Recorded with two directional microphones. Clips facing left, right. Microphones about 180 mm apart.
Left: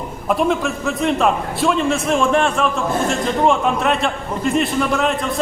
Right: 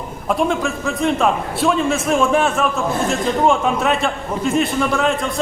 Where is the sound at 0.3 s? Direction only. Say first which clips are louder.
Left 1 dB; centre (ahead or behind).